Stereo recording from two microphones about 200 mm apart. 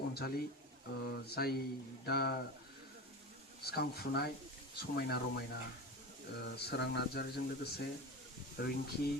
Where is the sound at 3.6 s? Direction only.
50° left (ahead or behind).